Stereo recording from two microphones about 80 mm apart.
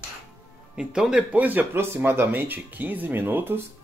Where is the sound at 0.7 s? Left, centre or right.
Centre; by 3.6 s right.